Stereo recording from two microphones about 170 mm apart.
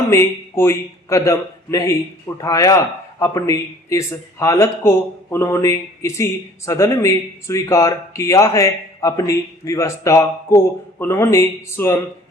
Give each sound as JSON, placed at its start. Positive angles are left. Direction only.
{"t": 0.1, "sound": "a man's voice", "side_deg": 15}